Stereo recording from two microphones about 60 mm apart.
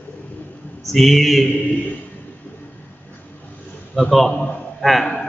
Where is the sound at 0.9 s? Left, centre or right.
Centre.